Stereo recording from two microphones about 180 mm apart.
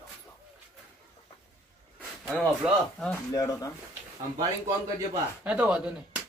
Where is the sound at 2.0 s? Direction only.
5° left (ahead or behind).